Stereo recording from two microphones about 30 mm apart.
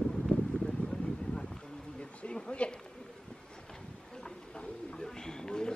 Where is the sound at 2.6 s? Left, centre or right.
Left.